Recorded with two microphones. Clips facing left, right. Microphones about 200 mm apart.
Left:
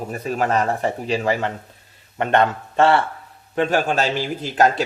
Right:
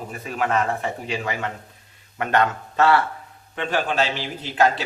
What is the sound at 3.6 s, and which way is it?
A man's voice, 45° left (ahead or behind).